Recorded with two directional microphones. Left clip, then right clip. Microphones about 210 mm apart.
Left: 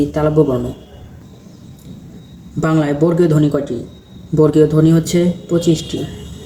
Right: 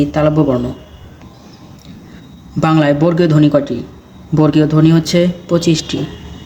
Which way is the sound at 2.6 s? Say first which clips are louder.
Right 3 dB; 40° right (ahead or behind).